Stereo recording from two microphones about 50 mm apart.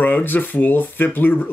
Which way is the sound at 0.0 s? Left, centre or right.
Left.